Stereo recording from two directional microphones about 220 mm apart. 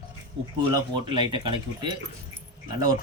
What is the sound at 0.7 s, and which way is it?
Speech, 20° right (ahead or behind).